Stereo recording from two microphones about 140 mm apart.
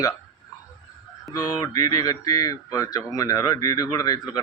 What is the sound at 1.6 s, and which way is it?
Speech, 25° left (ahead or behind).